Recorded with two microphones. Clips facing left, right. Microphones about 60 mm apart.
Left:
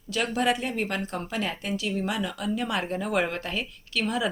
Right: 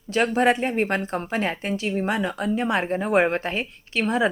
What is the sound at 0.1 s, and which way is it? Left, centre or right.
Speech, right.